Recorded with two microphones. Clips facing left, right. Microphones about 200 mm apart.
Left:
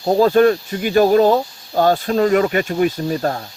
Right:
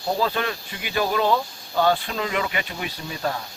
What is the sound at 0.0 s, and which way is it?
A man's voice, 45° left (ahead or behind).